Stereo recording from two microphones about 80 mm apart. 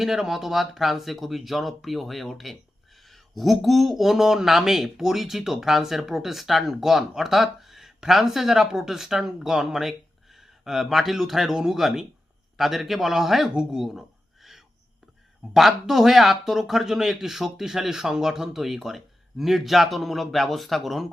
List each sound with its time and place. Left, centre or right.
0.0 s speech: centre
15.5 s speech: centre